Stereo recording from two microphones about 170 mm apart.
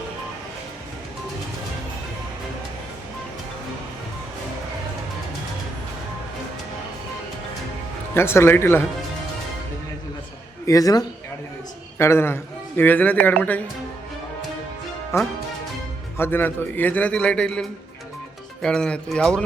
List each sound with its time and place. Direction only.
8.1 s a man's voice: 15° left (ahead or behind)
10.7 s a man's voice: 20° left (ahead or behind)
15.1 s a man's voice: 15° left (ahead or behind)